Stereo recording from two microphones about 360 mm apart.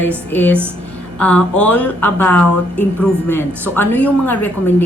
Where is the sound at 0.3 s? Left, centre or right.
Centre.